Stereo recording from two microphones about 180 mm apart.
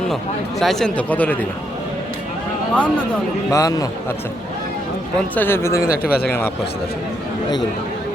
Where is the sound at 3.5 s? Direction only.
20° left (ahead or behind).